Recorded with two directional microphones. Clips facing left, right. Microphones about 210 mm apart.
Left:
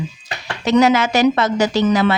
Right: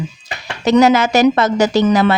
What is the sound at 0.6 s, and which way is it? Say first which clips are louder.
Speech: right 3 dB; 40° right (ahead or behind).